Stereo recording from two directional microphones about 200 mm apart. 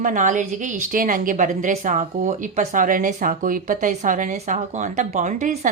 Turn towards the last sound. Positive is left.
turn(degrees=-35)  # may be behind; listen again after turning